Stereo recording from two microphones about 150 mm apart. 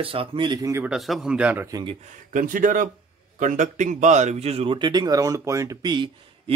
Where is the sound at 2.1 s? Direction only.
60° right (ahead or behind).